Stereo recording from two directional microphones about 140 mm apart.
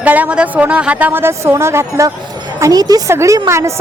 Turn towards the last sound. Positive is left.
turn(degrees=-20)  # may be behind; listen again after turning